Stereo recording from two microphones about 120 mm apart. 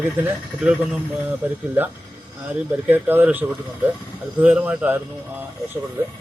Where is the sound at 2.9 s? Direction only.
15° right (ahead or behind).